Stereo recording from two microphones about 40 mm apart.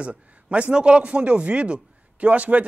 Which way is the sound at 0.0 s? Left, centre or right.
Right.